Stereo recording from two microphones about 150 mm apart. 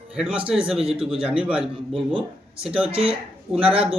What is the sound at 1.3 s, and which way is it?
A man's voice, 5° right (ahead or behind).